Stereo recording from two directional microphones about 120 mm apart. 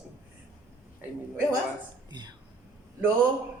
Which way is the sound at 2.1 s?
40° right (ahead or behind).